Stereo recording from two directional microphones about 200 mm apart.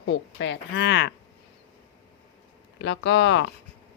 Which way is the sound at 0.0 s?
70° left (ahead or behind).